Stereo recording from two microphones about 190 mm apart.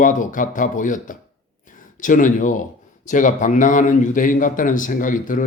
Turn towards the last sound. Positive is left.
turn(degrees=45)  # may be behind; listen again after turning